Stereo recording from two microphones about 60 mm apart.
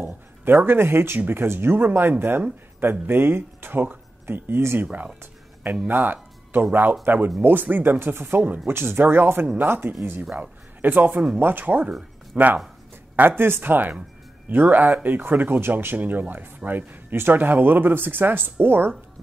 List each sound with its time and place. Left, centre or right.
0.0 s speech: right
4.8 s speech: centre
5.2 s a sound: right
5.9 s speech: right
13.4 s speech: right